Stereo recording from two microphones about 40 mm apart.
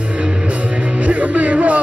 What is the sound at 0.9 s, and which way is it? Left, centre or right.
Music, right.